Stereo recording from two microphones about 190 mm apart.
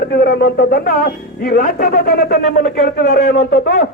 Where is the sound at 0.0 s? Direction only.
55° left (ahead or behind).